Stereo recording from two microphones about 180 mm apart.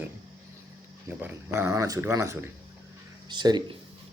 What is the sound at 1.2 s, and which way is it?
Speech, 10° right (ahead or behind).